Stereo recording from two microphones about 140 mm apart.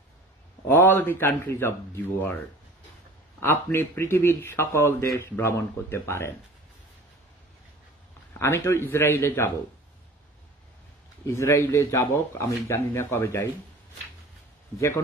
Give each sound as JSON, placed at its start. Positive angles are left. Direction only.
{"t": 0.7, "sound": "a man's voice", "side_deg": 15}
{"t": 8.3, "sound": "speech", "side_deg": 20}
{"t": 11.2, "sound": "speech", "side_deg": 20}